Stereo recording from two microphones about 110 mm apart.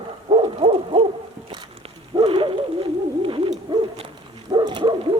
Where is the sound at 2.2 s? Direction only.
55° right (ahead or behind).